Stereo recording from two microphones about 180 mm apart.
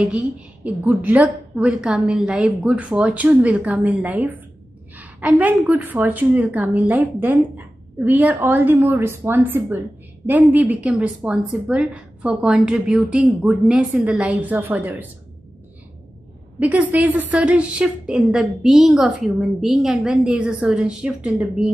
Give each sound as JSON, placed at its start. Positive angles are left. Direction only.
{"t": 0.8, "sound": "a woman's voice", "side_deg": -10}
{"t": 16.5, "sound": "a woman's voice", "side_deg": -10}